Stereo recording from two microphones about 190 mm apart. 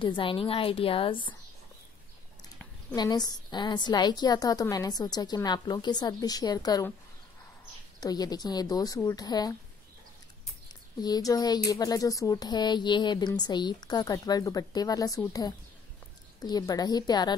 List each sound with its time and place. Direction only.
0.0 s a woman's voice: 25° left (ahead or behind)
3.0 s a woman's voice: 20° left (ahead or behind)
8.0 s a woman's voice: 20° left (ahead or behind)
11.0 s a woman's voice: 20° left (ahead or behind)